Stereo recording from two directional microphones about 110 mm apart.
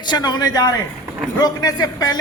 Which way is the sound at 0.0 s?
40° left (ahead or behind).